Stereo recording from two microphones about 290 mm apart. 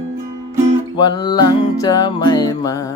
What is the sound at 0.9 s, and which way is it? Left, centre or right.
Music, centre.